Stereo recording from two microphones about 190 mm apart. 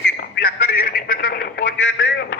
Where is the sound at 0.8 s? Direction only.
55° left (ahead or behind); by 2.4 s 75° left (ahead or behind).